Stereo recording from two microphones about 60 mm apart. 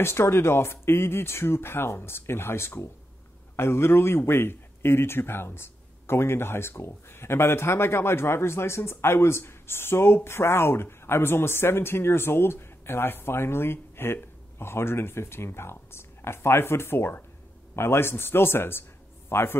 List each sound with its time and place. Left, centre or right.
0.0 s a man's voice: left